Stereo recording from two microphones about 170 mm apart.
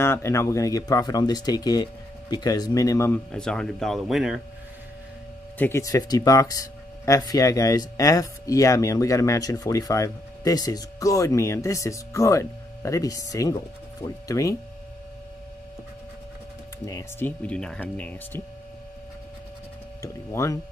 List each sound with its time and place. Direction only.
0.0 s speech: 15° left (ahead or behind)
3.3 s speech: 5° left (ahead or behind)
5.6 s speech: 15° left (ahead or behind)
16.8 s speech: 20° left (ahead or behind)
17.4 s speech: 5° left (ahead or behind)
20.0 s speech: 15° left (ahead or behind)